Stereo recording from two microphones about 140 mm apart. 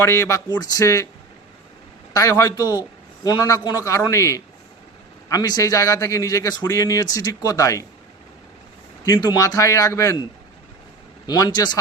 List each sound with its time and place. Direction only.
0.0 s speech: 20° left (ahead or behind)
2.1 s speech: 25° left (ahead or behind)
9.0 s speech: 30° left (ahead or behind)
11.3 s speech: 30° left (ahead or behind)